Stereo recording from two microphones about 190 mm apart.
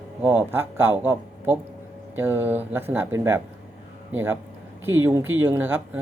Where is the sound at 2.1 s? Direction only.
10° right (ahead or behind).